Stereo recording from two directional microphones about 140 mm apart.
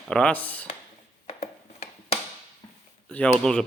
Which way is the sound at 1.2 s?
50° left (ahead or behind).